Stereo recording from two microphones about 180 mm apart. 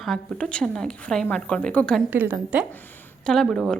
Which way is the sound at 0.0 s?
5° left (ahead or behind).